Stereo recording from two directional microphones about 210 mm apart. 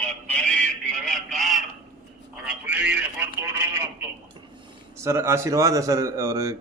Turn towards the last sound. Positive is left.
turn(degrees=-15)  # may be behind; listen again after turning